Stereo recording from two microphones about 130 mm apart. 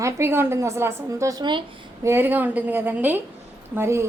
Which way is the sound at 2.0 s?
15° right (ahead or behind).